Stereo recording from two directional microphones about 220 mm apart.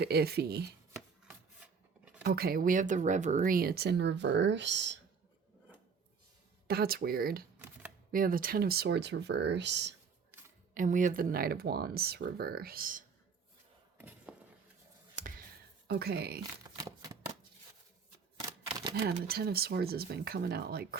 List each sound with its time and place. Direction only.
0.0 s speech: 45° right (ahead or behind)
1.3 s rub: 5° right (ahead or behind)
2.2 s speech: 45° right (ahead or behind)
6.7 s speech: 45° right (ahead or behind)
10.8 s speech: 35° right (ahead or behind)
14.0 s a sound: 10° right (ahead or behind)
15.1 s a sound: 35° right (ahead or behind)
15.9 s speech: 45° right (ahead or behind)
16.4 s a sound: 15° right (ahead or behind)
18.3 s camera: 20° right (ahead or behind)
19.0 s speech: 45° right (ahead or behind)